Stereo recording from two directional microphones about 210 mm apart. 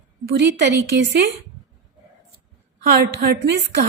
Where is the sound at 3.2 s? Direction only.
50° right (ahead or behind).